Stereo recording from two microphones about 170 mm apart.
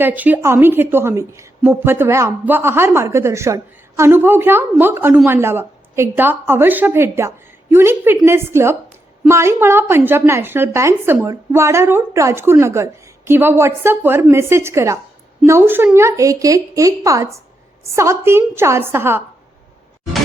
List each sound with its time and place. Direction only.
0.0 s a woman's voice: 10° right (ahead or behind)